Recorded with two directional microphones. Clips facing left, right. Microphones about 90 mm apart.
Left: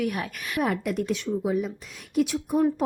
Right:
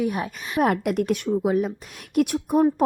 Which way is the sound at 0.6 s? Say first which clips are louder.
Right 5 dB; 60° right (ahead or behind).